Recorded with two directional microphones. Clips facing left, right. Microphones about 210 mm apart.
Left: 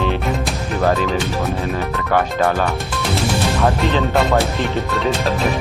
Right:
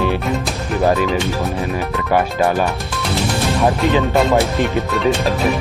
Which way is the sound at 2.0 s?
15° right (ahead or behind).